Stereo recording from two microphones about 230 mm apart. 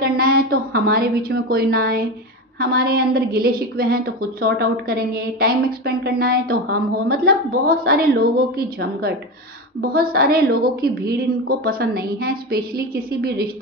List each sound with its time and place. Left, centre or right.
0.0 s a woman's voice: right